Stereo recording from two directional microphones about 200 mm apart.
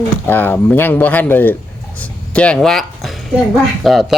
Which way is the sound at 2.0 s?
5° left (ahead or behind).